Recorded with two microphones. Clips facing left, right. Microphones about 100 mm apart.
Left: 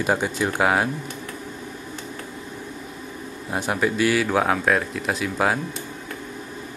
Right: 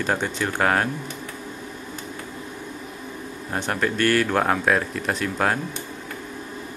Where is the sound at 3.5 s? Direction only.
10° left (ahead or behind).